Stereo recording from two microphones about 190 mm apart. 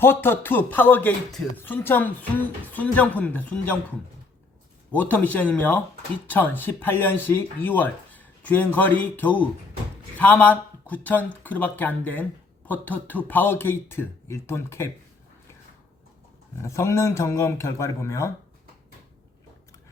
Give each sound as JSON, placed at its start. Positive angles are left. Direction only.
{"t": 0.0, "sound": "speech", "side_deg": 10}
{"t": 16.6, "sound": "speech", "side_deg": 15}